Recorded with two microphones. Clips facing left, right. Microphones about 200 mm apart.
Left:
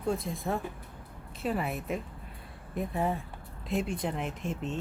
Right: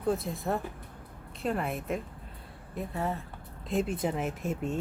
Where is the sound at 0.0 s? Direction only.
Centre (ahead or behind).